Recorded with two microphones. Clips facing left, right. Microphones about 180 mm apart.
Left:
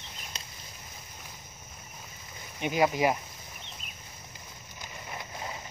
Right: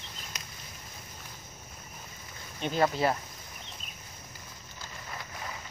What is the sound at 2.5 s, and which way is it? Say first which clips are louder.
Speech: left 1 dB; 10° left (ahead or behind).